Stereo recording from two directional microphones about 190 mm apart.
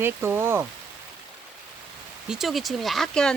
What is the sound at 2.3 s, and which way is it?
Speech, centre (ahead or behind).